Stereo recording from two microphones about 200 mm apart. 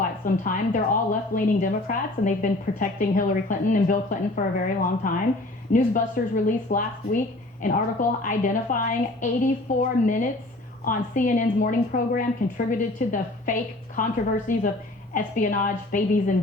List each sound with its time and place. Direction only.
0.0 s a woman's voice: 40° left (ahead or behind)
10.8 s a woman's voice: 40° left (ahead or behind)